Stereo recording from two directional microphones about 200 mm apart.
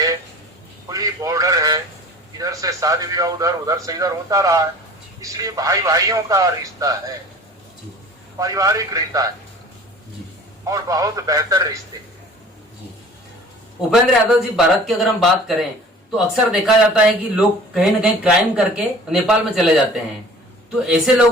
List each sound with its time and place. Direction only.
0.9 s a sound: 15° right (ahead or behind)
2.4 s a man's voice: 15° right (ahead or behind)
8.4 s a man's voice: 15° right (ahead or behind)
10.7 s a man's voice: 15° right (ahead or behind)
13.9 s a man's voice: centre (ahead or behind)